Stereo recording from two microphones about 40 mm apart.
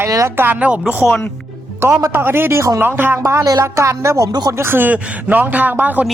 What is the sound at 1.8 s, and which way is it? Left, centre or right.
A man's voice, right.